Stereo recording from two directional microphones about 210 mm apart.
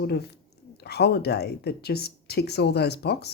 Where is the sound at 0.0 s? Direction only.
50° left (ahead or behind).